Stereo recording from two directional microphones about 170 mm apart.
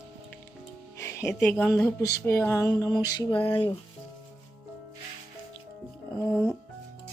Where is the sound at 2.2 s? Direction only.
15° left (ahead or behind).